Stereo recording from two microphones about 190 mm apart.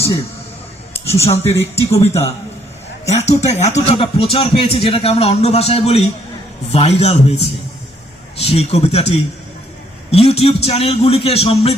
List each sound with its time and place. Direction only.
0.9 s speech: 30° left (ahead or behind)
1.3 s speech: 15° left (ahead or behind)
1.7 s a man's voice: 35° left (ahead or behind)
3.1 s a man's voice: 35° left (ahead or behind)